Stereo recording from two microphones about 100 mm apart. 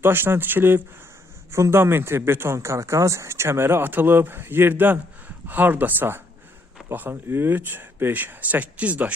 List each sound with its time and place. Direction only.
0.0 s speech: 20° right (ahead or behind)